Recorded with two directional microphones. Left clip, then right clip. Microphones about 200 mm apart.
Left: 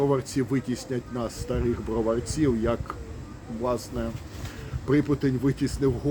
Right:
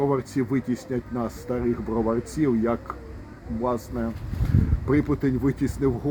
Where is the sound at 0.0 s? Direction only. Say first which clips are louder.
Right 1 dB; 25° right (ahead or behind).